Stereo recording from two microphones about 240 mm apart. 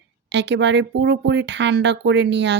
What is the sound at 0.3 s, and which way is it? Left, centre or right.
Speech, right.